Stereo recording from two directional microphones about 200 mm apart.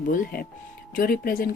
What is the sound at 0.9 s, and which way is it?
Speech, 45° left (ahead or behind).